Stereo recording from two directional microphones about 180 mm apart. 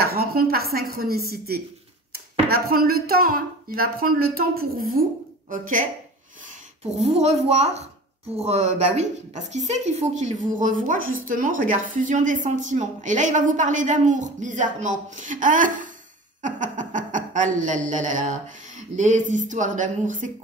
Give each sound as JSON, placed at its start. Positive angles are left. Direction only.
{"t": 0.0, "sound": "a woman's voice", "side_deg": -55}
{"t": 7.0, "sound": "a woman's voice", "side_deg": -35}